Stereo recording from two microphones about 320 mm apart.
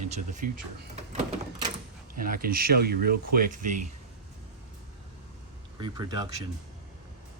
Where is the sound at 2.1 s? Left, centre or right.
Right.